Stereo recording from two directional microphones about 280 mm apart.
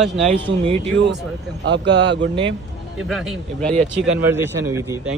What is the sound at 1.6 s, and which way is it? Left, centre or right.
Speech, right.